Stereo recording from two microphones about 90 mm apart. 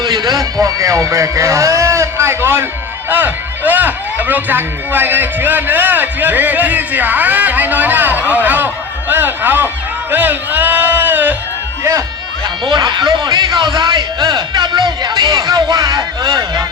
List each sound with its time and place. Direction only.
0.0 s speech: 50° right (ahead or behind); by 11.3 s 20° right (ahead or behind)
11.8 s speech: 35° right (ahead or behind)
12.6 s a man's voice: 55° right (ahead or behind)